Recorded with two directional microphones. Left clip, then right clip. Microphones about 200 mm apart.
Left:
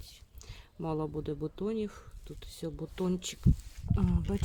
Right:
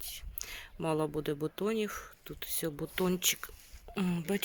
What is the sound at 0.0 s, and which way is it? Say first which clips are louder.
Speech: right 9 dB; centre (ahead or behind).